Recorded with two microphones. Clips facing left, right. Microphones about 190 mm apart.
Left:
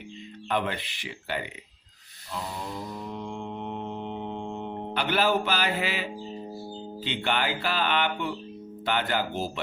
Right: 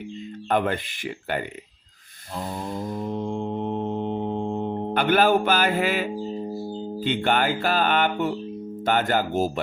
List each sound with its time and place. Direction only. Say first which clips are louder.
0.4 s music: right 5 dB; 50° right (ahead or behind)
2.3 s mantra: right 4 dB; 50° right (ahead or behind)
4.9 s music: right 6 dB; 50° right (ahead or behind)